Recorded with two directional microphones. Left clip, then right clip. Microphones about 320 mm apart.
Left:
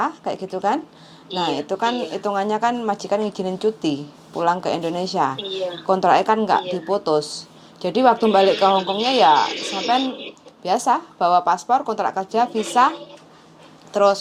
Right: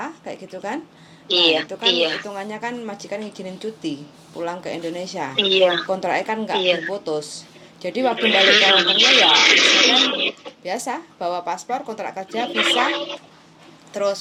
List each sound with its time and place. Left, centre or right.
0.0 s speech: left
1.3 s speech: right
2.2 s speech: left
5.4 s speech: right
5.9 s speech: left
8.2 s speech: right
10.6 s speech: left
12.5 s speech: right
13.9 s speech: centre